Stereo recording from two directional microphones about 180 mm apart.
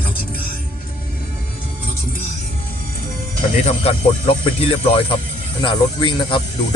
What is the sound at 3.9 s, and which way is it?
Speech, 30° left (ahead or behind).